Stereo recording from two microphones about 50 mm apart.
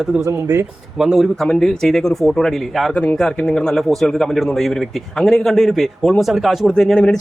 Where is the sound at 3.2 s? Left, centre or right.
Centre.